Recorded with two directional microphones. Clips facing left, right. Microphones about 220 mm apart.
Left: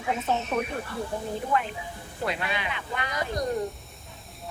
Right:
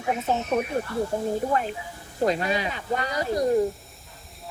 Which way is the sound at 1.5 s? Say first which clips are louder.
Right 1 dB; 40° right (ahead or behind).